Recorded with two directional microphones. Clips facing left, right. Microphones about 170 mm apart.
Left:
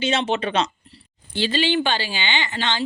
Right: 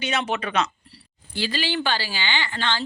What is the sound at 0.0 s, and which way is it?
A woman's voice, 25° left (ahead or behind).